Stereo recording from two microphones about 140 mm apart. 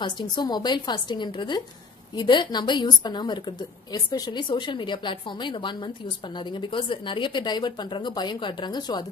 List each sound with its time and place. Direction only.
0.0 s a woman's voice: 30° left (ahead or behind)